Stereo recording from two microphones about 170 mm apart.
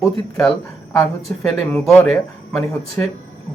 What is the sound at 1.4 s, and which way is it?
Speech, 5° left (ahead or behind).